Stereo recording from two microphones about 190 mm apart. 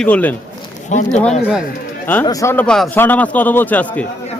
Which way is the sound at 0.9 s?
40° left (ahead or behind).